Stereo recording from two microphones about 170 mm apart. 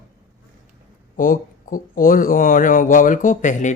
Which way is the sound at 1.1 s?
55° left (ahead or behind).